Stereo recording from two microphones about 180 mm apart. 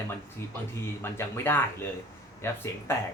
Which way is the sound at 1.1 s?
15° left (ahead or behind).